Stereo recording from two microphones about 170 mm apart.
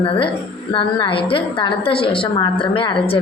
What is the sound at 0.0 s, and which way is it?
A woman's voice, 30° left (ahead or behind).